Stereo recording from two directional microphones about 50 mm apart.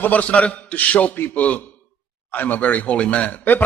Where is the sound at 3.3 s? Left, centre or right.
Left.